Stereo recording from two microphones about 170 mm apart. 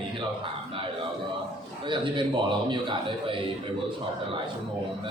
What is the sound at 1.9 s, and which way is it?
A man's voice, 30° right (ahead or behind).